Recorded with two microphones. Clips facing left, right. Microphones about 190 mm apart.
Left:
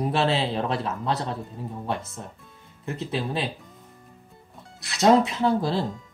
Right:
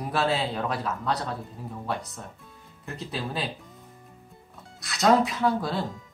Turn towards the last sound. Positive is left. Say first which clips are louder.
# left 3 dB
turn(degrees=25)  # may be behind; listen again after turning